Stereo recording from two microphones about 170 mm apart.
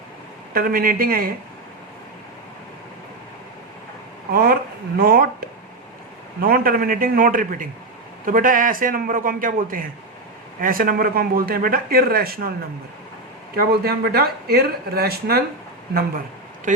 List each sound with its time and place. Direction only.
0.5 s speech: 60° right (ahead or behind)
4.3 s a man's voice: 65° right (ahead or behind)
13.6 s speech: 65° right (ahead or behind)
16.7 s speech: 50° right (ahead or behind)